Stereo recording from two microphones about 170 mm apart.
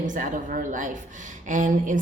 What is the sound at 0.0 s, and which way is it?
A woman's voice, 50° right (ahead or behind).